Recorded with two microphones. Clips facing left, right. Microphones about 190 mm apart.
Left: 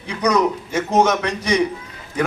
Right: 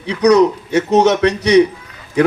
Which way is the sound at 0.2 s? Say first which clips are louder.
Right 7 dB; 70° right (ahead or behind).